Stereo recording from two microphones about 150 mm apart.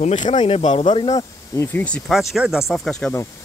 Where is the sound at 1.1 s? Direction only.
25° left (ahead or behind).